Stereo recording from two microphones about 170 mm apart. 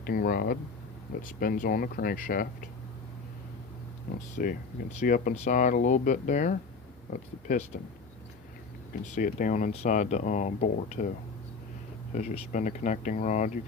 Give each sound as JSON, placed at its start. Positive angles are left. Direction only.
{"t": 0.0, "sound": "speech", "side_deg": 60}
{"t": 4.4, "sound": "speech", "side_deg": 55}
{"t": 9.1, "sound": "speech", "side_deg": 50}
{"t": 12.1, "sound": "speech", "side_deg": 45}